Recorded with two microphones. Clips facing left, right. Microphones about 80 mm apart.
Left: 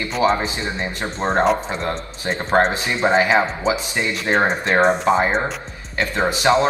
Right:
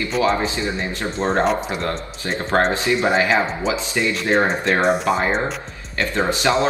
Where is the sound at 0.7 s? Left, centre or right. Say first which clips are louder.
Right 1 dB; left.